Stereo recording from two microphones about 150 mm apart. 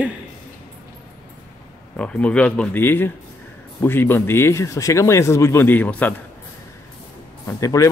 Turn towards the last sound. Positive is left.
turn(degrees=20)  # may be behind; listen again after turning